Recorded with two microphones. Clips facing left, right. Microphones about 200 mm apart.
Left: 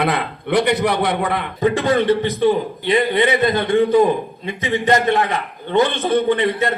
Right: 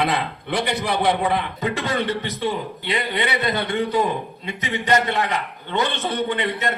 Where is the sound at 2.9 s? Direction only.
40° left (ahead or behind).